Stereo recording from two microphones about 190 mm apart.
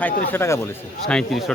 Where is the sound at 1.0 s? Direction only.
Centre (ahead or behind).